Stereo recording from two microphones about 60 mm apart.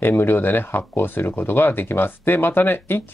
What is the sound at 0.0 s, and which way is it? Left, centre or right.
Speech, left.